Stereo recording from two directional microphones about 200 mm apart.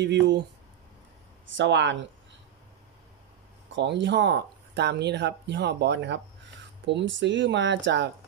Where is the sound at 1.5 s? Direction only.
65° right (ahead or behind).